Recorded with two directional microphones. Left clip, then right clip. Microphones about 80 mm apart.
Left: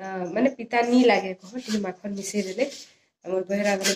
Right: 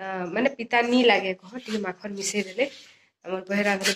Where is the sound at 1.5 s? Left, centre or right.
Left.